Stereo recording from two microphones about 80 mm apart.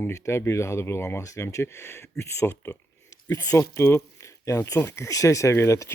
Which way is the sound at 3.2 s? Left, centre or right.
Left.